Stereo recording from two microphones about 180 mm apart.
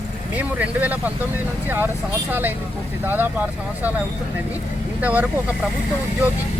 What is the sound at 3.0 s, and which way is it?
Speech, 10° right (ahead or behind).